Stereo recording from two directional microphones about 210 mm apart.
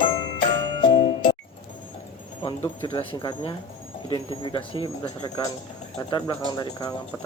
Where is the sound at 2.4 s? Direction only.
25° left (ahead or behind).